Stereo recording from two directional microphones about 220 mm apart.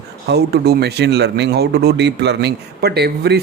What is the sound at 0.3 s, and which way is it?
Speech, 50° right (ahead or behind).